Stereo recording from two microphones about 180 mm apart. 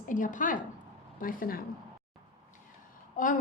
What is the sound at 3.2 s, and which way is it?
Speech, 50° left (ahead or behind).